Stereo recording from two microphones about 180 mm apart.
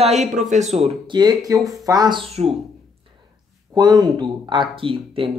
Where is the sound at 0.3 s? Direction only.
45° right (ahead or behind).